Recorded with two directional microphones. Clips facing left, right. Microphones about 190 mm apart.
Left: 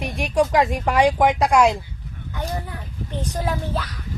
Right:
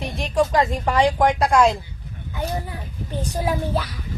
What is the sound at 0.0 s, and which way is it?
Speech, 15° left (ahead or behind).